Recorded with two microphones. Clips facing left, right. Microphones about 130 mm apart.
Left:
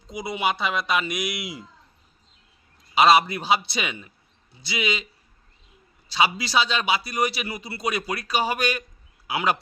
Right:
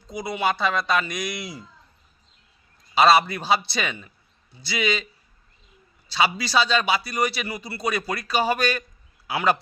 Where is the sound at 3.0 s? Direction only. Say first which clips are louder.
Even; 15° left (ahead or behind).